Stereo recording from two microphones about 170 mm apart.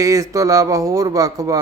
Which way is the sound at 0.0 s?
20° right (ahead or behind).